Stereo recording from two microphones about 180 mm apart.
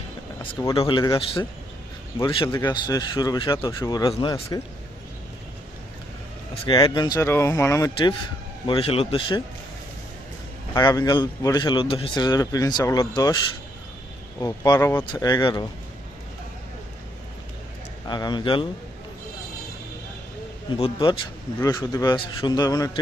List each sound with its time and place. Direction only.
0.6 s speech: 25° left (ahead or behind)
6.7 s speech: 25° left (ahead or behind)
8.6 s speech: 30° left (ahead or behind)
10.8 s speech: 20° left (ahead or behind)
14.4 s speech: 20° left (ahead or behind)
18.1 s speech: 25° left (ahead or behind)
20.8 s speech: 25° left (ahead or behind)